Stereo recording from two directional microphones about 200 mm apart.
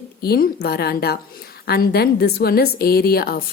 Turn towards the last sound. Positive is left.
turn(degrees=50)  # may be behind; listen again after turning